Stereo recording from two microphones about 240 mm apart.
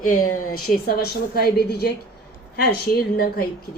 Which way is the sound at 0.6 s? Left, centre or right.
Left.